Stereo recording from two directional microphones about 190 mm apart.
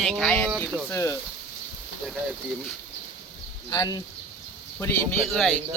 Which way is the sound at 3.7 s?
20° left (ahead or behind).